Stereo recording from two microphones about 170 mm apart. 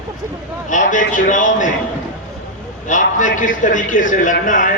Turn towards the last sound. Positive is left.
turn(degrees=50)  # may be behind; listen again after turning